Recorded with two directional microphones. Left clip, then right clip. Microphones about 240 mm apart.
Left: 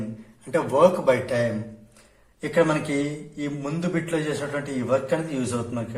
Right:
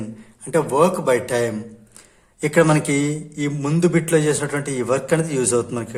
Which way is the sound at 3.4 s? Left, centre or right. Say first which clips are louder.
Right 10 dB; right.